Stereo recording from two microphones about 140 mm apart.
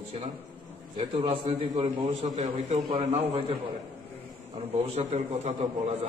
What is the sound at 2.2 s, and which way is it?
A man's voice, 55° right (ahead or behind).